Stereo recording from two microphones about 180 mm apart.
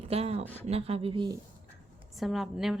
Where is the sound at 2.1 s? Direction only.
Centre (ahead or behind).